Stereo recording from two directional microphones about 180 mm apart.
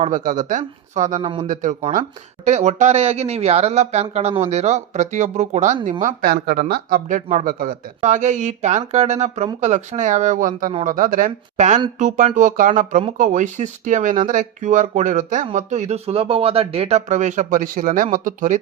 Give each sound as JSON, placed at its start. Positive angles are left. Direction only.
{"t": 0.0, "sound": "speech", "side_deg": -45}